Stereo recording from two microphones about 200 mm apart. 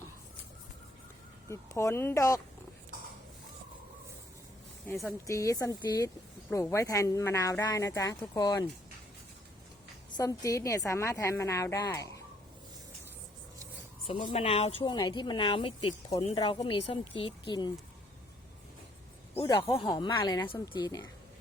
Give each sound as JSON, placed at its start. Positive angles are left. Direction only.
{"t": 1.5, "sound": "speech", "side_deg": 15}
{"t": 4.9, "sound": "speech", "side_deg": 10}
{"t": 10.2, "sound": "speech", "side_deg": 15}
{"t": 14.3, "sound": "speech", "side_deg": 30}
{"t": 19.3, "sound": "speech", "side_deg": 15}